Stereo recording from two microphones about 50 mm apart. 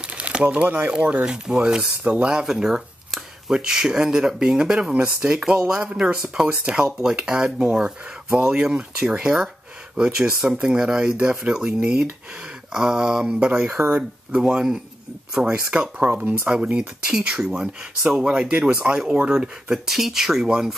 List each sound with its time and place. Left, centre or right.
0.1 s crumpling: right
0.7 s speech: right; by 13.2 s centre
13.2 s speech: right
13.7 s speech: right
14.3 s speech: centre